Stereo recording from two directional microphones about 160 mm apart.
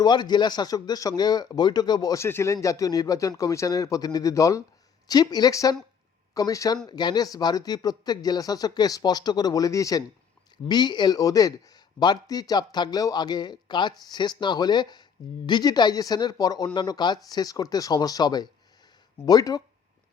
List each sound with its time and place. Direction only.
0.0 s speech: 25° left (ahead or behind)